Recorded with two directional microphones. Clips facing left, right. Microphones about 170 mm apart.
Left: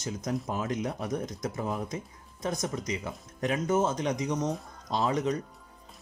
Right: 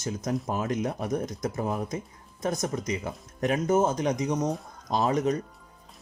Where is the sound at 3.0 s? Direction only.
45° right (ahead or behind).